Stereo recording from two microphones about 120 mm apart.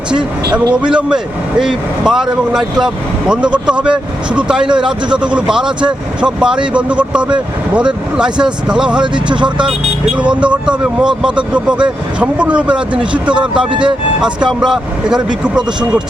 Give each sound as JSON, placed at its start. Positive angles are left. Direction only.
{"t": 0.6, "sound": "speech", "side_deg": -40}
{"t": 0.9, "sound": "speech", "side_deg": -5}
{"t": 9.0, "sound": "speech", "side_deg": -40}
{"t": 10.2, "sound": "speech", "side_deg": -10}
{"t": 13.7, "sound": "speech", "side_deg": -40}
{"t": 14.2, "sound": "speech", "side_deg": -5}
{"t": 15.5, "sound": "speech", "side_deg": -35}